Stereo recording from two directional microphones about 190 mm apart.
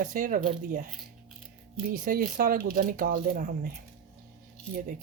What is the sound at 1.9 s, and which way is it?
Speech, 45° right (ahead or behind).